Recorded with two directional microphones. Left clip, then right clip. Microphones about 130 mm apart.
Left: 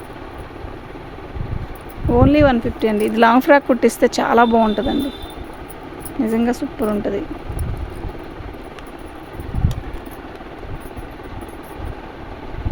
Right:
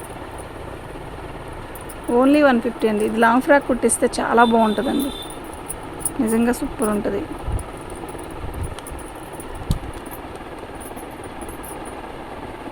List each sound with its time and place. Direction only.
2.1 s speech: 25° left (ahead or behind)
3.0 s speech: 40° left (ahead or behind); by 4.9 s 20° left (ahead or behind)
6.2 s speech: 15° left (ahead or behind)